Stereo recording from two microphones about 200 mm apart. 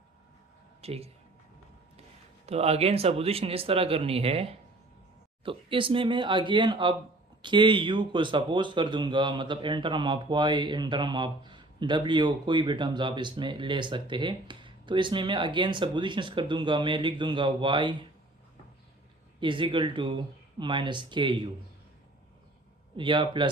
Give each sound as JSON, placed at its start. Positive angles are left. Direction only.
{"t": 0.8, "sound": "speech", "side_deg": -30}
{"t": 2.5, "sound": "a man's voice", "side_deg": -30}
{"t": 19.4, "sound": "a man's voice", "side_deg": -25}
{"t": 23.0, "sound": "a man's voice", "side_deg": -25}